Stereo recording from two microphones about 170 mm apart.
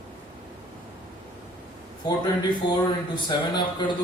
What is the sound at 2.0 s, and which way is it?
Speech, 25° left (ahead or behind).